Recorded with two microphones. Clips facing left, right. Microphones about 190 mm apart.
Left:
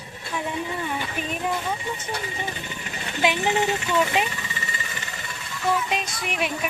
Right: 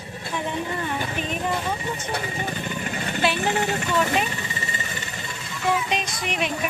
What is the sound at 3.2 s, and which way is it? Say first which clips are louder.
Speech: left 1 dB; 15° left (ahead or behind).